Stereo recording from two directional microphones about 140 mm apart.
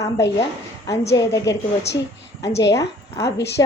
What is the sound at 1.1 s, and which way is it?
Speech, 25° left (ahead or behind).